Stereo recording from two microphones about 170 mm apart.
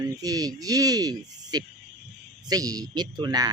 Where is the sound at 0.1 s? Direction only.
20° right (ahead or behind).